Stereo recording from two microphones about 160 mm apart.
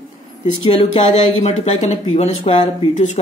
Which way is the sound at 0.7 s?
40° left (ahead or behind).